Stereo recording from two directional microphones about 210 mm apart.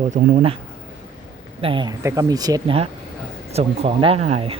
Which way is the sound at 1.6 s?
25° right (ahead or behind).